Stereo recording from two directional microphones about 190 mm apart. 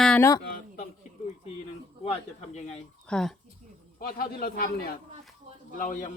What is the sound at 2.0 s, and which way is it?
Speech, 35° left (ahead or behind).